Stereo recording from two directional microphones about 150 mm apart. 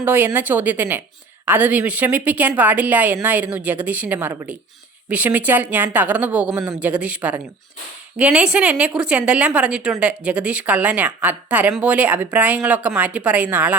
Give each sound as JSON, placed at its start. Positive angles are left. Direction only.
{"t": 0.0, "sound": "a woman's voice", "side_deg": -15}
{"t": 6.5, "sound": "a man's voice", "side_deg": -25}
{"t": 6.7, "sound": "a woman's voice", "side_deg": -10}